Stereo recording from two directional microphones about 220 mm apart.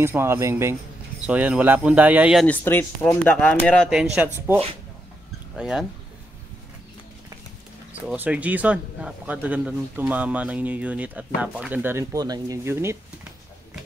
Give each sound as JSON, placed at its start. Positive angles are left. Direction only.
{"t": 0.0, "sound": "speech", "side_deg": -10}
{"t": 2.4, "sound": "speech", "side_deg": 10}
{"t": 5.6, "sound": "speech", "side_deg": 0}
{"t": 8.1, "sound": "speech", "side_deg": -5}